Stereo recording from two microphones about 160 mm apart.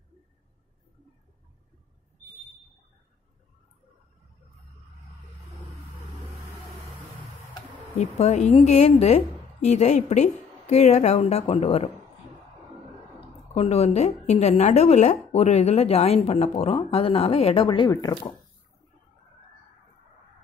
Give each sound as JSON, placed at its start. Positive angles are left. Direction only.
{"t": 8.0, "sound": "a woman's voice", "side_deg": 45}
{"t": 13.6, "sound": "a woman's voice", "side_deg": 40}